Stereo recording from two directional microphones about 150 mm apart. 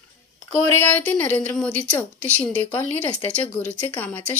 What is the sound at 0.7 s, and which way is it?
Speech, 10° left (ahead or behind).